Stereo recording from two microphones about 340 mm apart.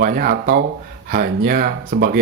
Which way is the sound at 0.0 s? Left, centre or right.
Right.